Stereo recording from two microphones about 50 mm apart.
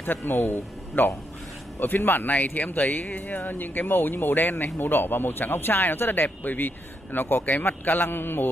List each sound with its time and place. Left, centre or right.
0.0 s speech: left